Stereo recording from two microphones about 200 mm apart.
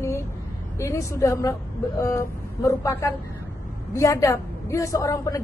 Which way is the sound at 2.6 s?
15° left (ahead or behind).